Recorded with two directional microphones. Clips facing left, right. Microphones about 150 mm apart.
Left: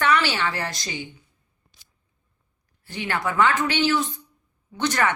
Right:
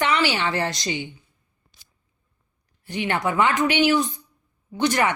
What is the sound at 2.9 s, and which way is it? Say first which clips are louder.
A woman's voice: right 3 dB; 20° right (ahead or behind).